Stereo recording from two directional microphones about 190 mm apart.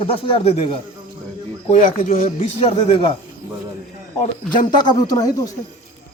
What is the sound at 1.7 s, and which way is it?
Speech, 45° left (ahead or behind).